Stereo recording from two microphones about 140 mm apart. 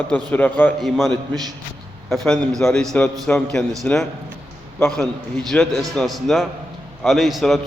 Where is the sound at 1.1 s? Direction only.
30° right (ahead or behind).